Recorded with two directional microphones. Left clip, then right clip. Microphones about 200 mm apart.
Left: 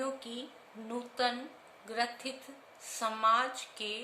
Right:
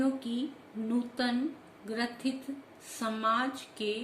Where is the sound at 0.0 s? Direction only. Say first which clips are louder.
Right 5 dB; 15° left (ahead or behind).